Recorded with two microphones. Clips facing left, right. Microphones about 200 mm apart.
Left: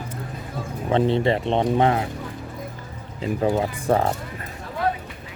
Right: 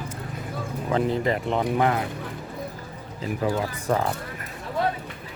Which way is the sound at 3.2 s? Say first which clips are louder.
Left 4 dB; 30° left (ahead or behind).